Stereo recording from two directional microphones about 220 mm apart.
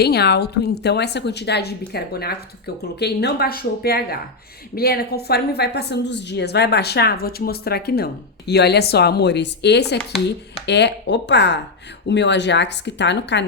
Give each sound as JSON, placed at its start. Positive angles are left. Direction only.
{"t": 0.0, "sound": "a woman's voice", "side_deg": 50}